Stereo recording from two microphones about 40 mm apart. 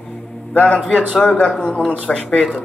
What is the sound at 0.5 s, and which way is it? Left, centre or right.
Speech, left.